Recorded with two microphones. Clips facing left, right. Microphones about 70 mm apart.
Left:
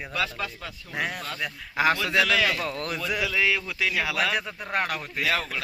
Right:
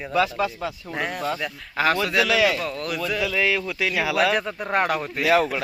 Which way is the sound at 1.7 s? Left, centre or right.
Centre.